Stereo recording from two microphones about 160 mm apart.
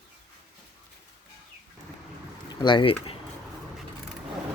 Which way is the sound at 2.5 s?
30° left (ahead or behind).